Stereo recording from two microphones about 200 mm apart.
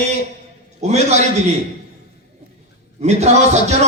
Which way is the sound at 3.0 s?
35° right (ahead or behind).